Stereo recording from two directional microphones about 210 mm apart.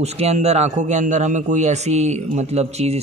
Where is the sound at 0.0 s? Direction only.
30° right (ahead or behind).